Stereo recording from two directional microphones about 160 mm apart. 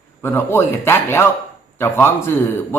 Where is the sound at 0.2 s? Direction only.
15° left (ahead or behind).